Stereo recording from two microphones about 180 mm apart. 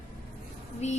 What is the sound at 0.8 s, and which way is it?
Music, 40° left (ahead or behind).